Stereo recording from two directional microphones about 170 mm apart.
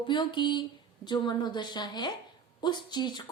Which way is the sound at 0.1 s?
25° left (ahead or behind).